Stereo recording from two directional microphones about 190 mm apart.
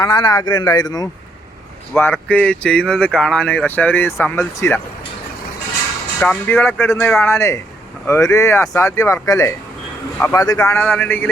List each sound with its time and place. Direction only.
0.0 s a man's voice: 20° left (ahead or behind)
6.1 s speech: 10° left (ahead or behind)